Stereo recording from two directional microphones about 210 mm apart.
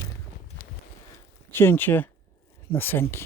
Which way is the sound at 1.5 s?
10° left (ahead or behind).